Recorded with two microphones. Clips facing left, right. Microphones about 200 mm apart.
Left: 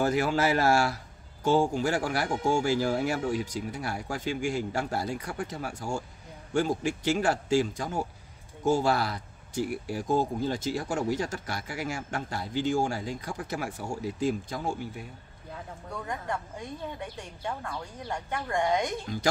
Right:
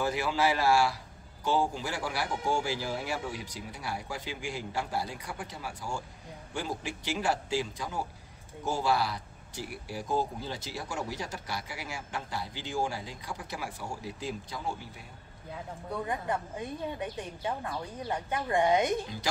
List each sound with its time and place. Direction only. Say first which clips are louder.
0.0 s speech: left 3 dB; 45° left (ahead or behind)
17.4 s a woman's voice: even; 15° right (ahead or behind)